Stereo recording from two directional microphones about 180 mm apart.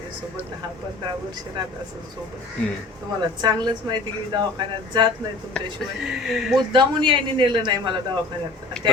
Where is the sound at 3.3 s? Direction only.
25° right (ahead or behind).